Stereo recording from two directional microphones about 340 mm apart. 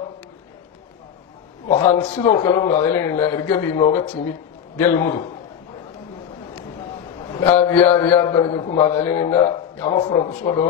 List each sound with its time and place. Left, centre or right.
1.7 s a man's voice: centre
7.3 s a man's voice: centre